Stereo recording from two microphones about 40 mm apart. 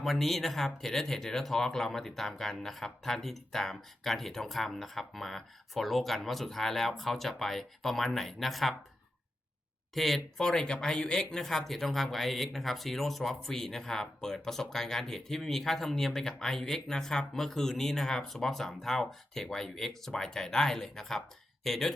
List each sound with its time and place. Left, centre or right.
0.0 s speech: centre
9.9 s speech: centre
10.4 s speech: centre